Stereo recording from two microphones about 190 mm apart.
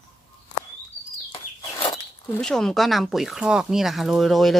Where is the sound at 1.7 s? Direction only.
25° left (ahead or behind).